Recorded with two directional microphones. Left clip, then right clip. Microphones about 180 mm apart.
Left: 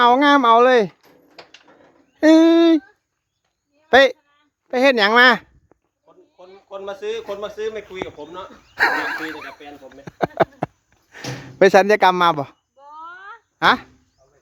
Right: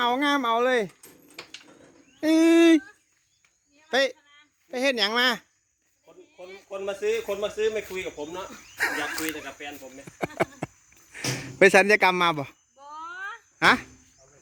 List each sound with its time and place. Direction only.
0.0 s speech: 55° left (ahead or behind)
1.4 s a sound: 50° right (ahead or behind)
2.4 s speech: 15° left (ahead or behind)
3.8 s speech: 40° left (ahead or behind)
6.7 s speech: 20° right (ahead or behind)
8.7 s speech: 40° left (ahead or behind)
9.5 s speech: 10° right (ahead or behind)
10.2 s a sound: 15° left (ahead or behind)
11.1 s speech: 10° left (ahead or behind)
12.8 s a sound: 10° right (ahead or behind)
13.6 s speech: 5° left (ahead or behind)